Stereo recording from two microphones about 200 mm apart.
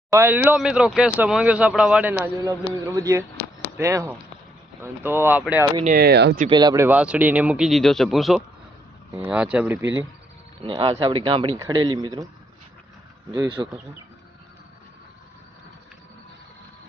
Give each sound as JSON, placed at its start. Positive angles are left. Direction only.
{"t": 0.1, "sound": "speech", "side_deg": -10}
{"t": 5.8, "sound": "speech", "side_deg": -50}
{"t": 6.5, "sound": "speech", "side_deg": -20}
{"t": 6.8, "sound": "speech", "side_deg": -5}
{"t": 10.6, "sound": "speech", "side_deg": -25}
{"t": 13.3, "sound": "speech", "side_deg": -20}